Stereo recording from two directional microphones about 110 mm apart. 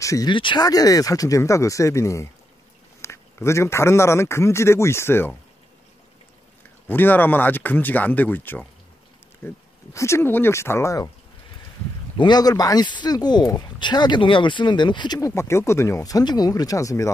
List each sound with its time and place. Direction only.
0.0 s speech: 30° left (ahead or behind)
0.3 s speech: 45° left (ahead or behind); by 5.3 s 20° left (ahead or behind)
6.9 s speech: 20° left (ahead or behind)
12.2 s speech: 40° left (ahead or behind)
15.1 s speech: 25° left (ahead or behind)